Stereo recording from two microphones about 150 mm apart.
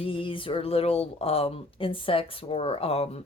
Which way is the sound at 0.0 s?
35° left (ahead or behind).